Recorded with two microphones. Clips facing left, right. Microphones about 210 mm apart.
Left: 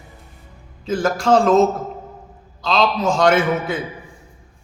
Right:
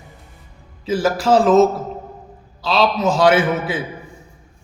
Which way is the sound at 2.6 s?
5° right (ahead or behind).